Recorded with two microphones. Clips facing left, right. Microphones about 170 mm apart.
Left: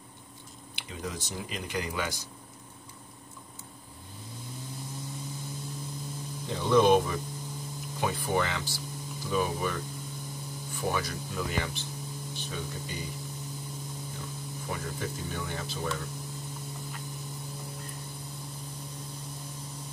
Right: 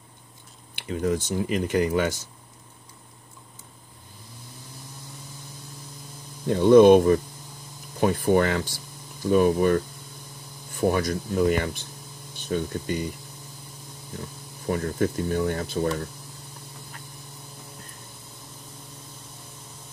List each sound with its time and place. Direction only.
0.7 s speech: 55° right (ahead or behind)
6.4 s speech: 55° right (ahead or behind)
10.8 s speech: 50° right (ahead or behind)
14.7 s speech: 55° right (ahead or behind)